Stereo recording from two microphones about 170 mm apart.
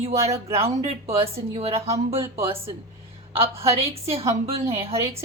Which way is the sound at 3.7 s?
35° right (ahead or behind).